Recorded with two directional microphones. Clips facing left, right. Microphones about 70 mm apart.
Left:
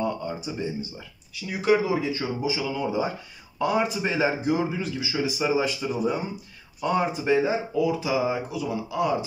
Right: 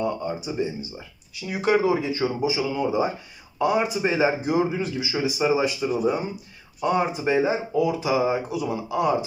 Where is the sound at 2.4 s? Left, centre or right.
Centre.